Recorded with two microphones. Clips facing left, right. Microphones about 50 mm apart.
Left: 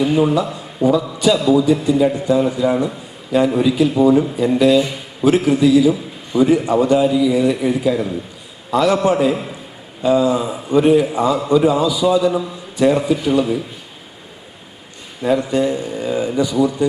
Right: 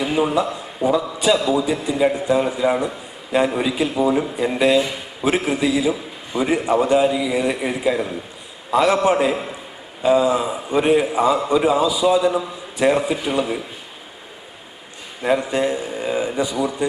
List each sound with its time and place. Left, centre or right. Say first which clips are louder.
0.0 s a man's voice: left 4 dB; centre
1.7 s a man's voice: left 4 dB; centre
3.8 s a man's voice: left 5 dB; centre
4.4 s a man's voice: left 4 dB; right
9.3 s a man's voice: left 2 dB; centre
10.0 s a man's voice: left 1 dB; centre
15.2 s a man's voice: left 2 dB; centre